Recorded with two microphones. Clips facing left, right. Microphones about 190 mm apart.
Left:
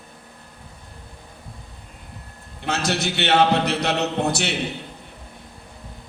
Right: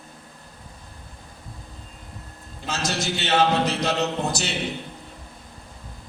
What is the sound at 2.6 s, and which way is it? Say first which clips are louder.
Speech: left 4 dB; 65° left (ahead or behind).